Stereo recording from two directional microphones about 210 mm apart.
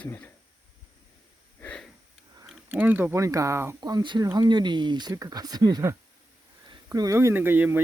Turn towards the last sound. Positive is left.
turn(degrees=-10)  # may be behind; listen again after turning